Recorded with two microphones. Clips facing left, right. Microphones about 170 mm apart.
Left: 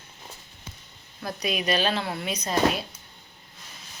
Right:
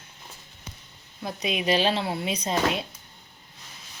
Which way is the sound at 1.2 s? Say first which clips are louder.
Even; 20° right (ahead or behind).